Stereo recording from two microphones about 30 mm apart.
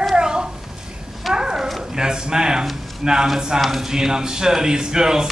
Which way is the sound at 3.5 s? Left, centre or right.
Right.